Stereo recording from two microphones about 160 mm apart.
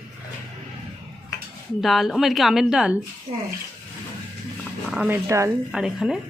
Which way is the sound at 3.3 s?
45° right (ahead or behind).